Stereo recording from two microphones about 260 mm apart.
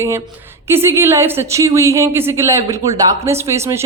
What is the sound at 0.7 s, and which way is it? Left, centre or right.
A woman's voice, centre.